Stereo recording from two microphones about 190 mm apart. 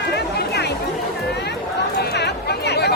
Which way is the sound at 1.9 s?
60° left (ahead or behind).